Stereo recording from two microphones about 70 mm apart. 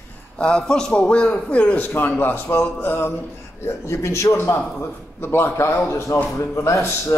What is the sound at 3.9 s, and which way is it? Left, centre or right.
A man's voice, left.